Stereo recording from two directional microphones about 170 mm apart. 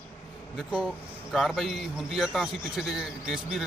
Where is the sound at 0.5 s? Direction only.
5° right (ahead or behind).